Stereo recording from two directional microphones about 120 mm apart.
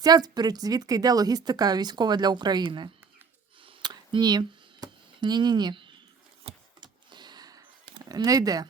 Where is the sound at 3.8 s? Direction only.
40° right (ahead or behind).